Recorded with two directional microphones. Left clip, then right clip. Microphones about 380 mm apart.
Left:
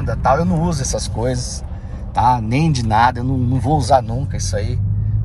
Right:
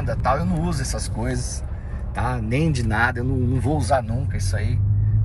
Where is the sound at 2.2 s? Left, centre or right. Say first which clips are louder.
Left 10 dB; centre.